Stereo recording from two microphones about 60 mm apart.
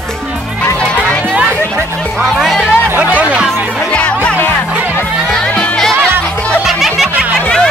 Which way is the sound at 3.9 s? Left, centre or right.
Centre.